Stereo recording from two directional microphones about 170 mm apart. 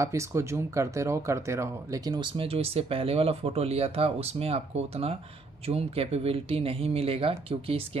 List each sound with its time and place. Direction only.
0.0 s speech: 15° right (ahead or behind); by 8.0 s 35° right (ahead or behind)